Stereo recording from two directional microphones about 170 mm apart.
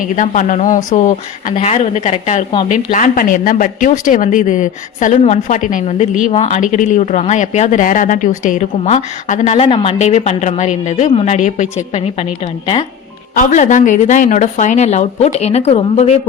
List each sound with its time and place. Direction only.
0.2 s a woman's voice: 45° left (ahead or behind)
9.6 s a woman's voice: 30° left (ahead or behind); by 11.7 s 45° left (ahead or behind)
13.3 s speech: 50° left (ahead or behind)